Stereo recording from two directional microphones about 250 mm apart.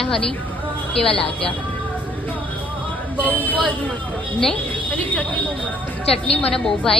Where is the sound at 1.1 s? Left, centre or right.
Left.